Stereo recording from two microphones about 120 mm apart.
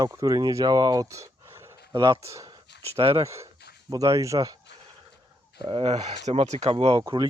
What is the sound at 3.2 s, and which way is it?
Speech, 25° right (ahead or behind).